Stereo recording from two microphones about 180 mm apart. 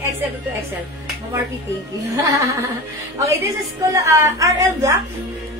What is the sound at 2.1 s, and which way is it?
Speech, 20° right (ahead or behind).